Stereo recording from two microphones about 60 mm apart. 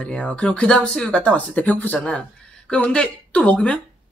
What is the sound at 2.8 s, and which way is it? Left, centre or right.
Speech, left.